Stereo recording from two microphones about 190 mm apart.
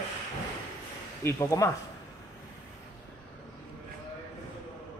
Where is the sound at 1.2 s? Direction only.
15° left (ahead or behind).